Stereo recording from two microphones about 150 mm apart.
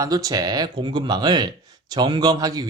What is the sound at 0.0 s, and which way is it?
Speech, 25° right (ahead or behind).